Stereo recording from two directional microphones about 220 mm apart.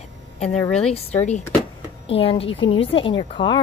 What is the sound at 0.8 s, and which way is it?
Speech, 25° left (ahead or behind).